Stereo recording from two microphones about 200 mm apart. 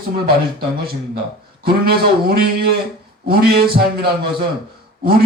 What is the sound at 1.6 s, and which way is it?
A man's voice, 50° right (ahead or behind).